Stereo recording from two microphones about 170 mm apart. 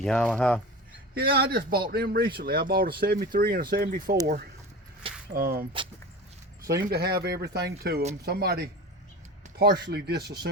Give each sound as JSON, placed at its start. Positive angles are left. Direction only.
{"t": 0.0, "sound": "speech", "side_deg": 5}
{"t": 1.1, "sound": "speech", "side_deg": -65}
{"t": 5.3, "sound": "speech", "side_deg": -60}
{"t": 6.7, "sound": "speech", "side_deg": -65}